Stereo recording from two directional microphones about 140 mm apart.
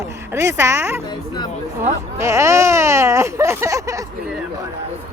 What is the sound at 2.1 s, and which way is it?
Speech, 20° right (ahead or behind).